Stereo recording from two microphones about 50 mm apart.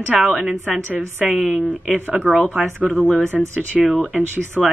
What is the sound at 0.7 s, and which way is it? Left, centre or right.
A woman's voice, right.